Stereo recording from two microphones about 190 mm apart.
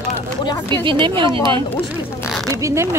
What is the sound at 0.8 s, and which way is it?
Speech, 25° right (ahead or behind).